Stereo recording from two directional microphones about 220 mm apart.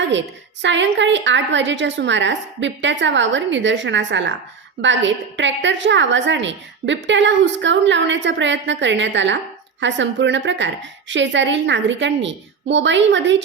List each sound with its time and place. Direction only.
0.0 s a woman's voice: 55° right (ahead or behind)